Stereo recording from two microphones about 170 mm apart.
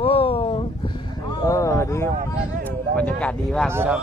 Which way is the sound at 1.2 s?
20° left (ahead or behind).